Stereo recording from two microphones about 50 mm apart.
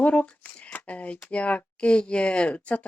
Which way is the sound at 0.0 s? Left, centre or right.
Left.